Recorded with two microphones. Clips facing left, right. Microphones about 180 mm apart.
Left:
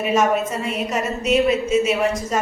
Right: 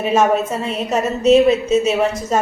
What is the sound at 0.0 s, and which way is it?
A woman's voice, 30° right (ahead or behind).